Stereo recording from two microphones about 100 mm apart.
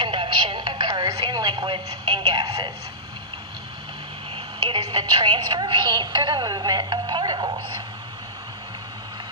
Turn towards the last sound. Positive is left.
turn(degrees=-50)  # may be behind; listen again after turning